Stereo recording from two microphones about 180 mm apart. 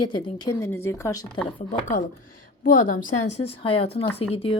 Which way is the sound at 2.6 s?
50° left (ahead or behind).